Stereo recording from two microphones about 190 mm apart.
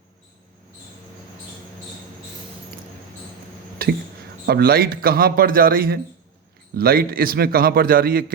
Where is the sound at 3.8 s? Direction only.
55° right (ahead or behind).